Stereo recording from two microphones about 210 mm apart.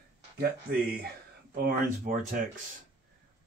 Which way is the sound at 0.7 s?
45° right (ahead or behind).